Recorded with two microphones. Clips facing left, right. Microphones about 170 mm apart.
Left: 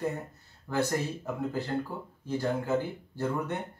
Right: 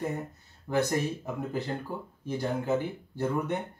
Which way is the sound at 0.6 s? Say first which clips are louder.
Right 2 dB; 20° right (ahead or behind).